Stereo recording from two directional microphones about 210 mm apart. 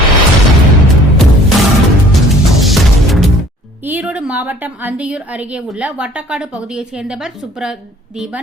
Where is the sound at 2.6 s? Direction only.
Centre (ahead or behind).